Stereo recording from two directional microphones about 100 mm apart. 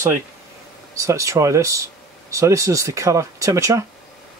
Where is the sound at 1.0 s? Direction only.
30° right (ahead or behind).